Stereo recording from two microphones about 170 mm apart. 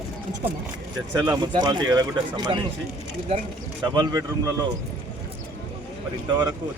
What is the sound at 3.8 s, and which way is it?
Speech, 25° right (ahead or behind).